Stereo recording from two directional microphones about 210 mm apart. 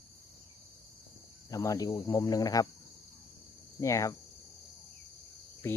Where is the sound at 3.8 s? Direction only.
15° left (ahead or behind).